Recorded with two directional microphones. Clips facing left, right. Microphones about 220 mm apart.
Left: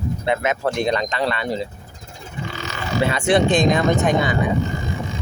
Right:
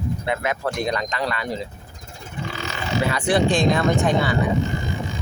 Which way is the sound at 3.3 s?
20° left (ahead or behind).